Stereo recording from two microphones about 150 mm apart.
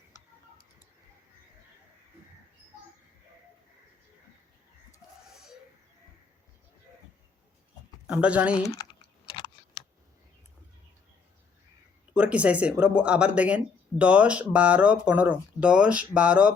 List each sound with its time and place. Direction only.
0.1 s a sound: 20° left (ahead or behind)
5.3 s bird: 5° right (ahead or behind)
8.0 s speech: 10° right (ahead or behind)
8.7 s typing: 30° left (ahead or behind)
12.1 s speech: 10° right (ahead or behind)